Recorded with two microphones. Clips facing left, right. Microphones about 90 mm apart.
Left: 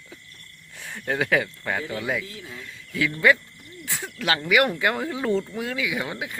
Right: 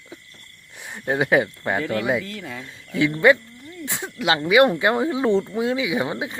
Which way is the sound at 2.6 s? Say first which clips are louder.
Right 5 dB; 25° right (ahead or behind).